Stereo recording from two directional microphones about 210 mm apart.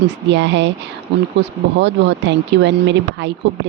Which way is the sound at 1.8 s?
55° right (ahead or behind).